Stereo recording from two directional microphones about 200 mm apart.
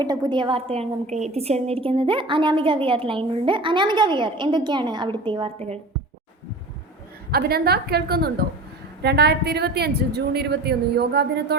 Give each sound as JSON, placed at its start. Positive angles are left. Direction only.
{"t": 0.0, "sound": "a woman's voice", "side_deg": -20}
{"t": 7.3, "sound": "a woman's voice", "side_deg": -50}